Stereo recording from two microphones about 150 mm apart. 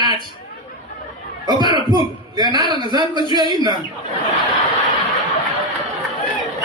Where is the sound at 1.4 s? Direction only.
30° right (ahead or behind).